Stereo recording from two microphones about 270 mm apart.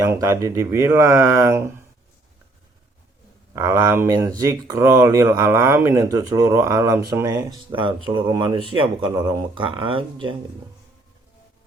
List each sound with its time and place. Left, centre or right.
0.0 s speech: centre
3.5 s speech: centre